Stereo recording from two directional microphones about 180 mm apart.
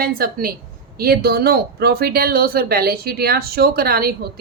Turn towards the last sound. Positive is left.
turn(degrees=-55)  # may be behind; listen again after turning